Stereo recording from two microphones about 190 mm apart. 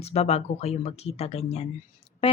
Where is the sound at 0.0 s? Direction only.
35° left (ahead or behind).